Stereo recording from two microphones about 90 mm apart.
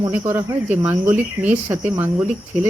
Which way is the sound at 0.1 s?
20° right (ahead or behind).